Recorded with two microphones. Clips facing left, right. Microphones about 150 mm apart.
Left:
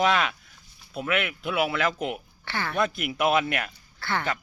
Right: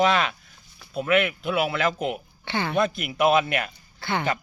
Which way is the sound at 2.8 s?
5° left (ahead or behind).